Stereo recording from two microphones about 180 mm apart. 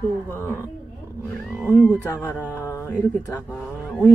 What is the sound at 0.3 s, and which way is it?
Speech, 15° left (ahead or behind).